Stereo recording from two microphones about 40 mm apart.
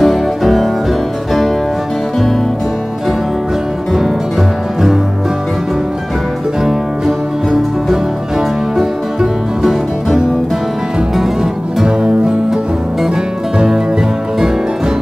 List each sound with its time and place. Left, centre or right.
0.0 s music: centre
7.1 s music: centre
12.0 s music: right